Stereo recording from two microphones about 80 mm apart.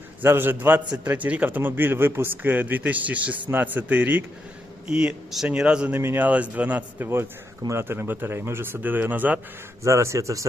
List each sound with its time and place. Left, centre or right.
0.2 s a man's voice: right; by 5.9 s centre
5.9 s speech: right
6.2 s speech: centre
9.8 s a man's voice: right